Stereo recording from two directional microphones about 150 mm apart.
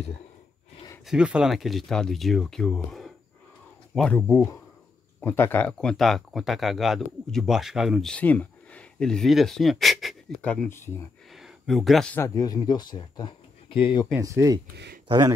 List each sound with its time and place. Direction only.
1.0 s speech: 5° right (ahead or behind)
11.3 s a sound: centre (ahead or behind)
12.2 s speech: 25° left (ahead or behind)
14.1 s speech: 20° right (ahead or behind)